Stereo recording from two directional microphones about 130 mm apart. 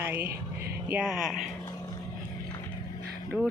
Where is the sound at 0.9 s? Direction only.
5° right (ahead or behind).